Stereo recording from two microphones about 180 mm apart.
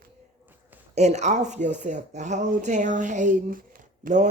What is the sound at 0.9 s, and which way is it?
Speech, 40° right (ahead or behind).